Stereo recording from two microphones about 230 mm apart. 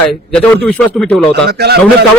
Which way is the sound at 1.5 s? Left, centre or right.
Right.